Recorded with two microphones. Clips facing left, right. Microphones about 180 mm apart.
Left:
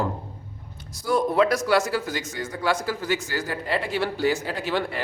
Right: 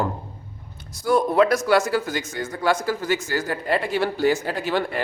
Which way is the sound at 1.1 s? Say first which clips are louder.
Right 3 dB; 55° right (ahead or behind).